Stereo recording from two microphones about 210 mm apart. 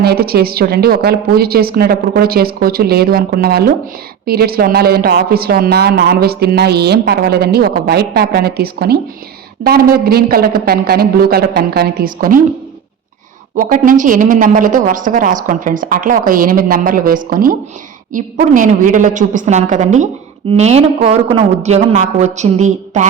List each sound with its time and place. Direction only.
0.0 s speech: 50° right (ahead or behind)
13.6 s a woman's voice: 40° right (ahead or behind)